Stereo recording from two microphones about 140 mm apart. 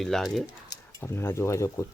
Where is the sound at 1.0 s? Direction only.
15° left (ahead or behind).